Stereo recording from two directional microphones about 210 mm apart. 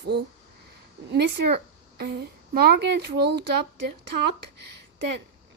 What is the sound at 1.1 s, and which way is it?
A woman's voice, 55° right (ahead or behind).